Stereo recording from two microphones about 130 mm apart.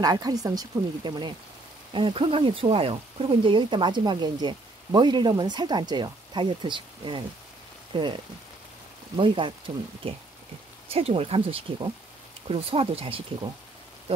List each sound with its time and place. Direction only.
0.0 s speech: 30° right (ahead or behind)
7.9 s frying: 35° right (ahead or behind)
9.1 s speech: 40° right (ahead or behind)